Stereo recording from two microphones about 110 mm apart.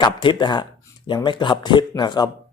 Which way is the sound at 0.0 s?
45° left (ahead or behind).